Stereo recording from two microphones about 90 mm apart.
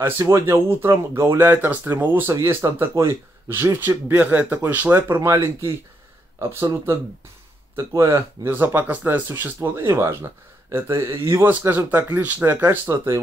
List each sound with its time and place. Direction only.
0.2 s speech: 30° right (ahead or behind)
2.6 s speech: 35° right (ahead or behind)
7.7 s speech: 35° right (ahead or behind)
8.5 s speech: 25° right (ahead or behind)